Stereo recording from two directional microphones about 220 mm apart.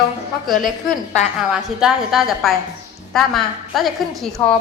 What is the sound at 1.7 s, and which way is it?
A woman's voice, centre (ahead or behind).